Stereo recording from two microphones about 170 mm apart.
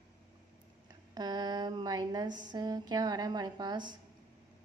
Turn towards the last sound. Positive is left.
turn(degrees=-25)  # may be behind; listen again after turning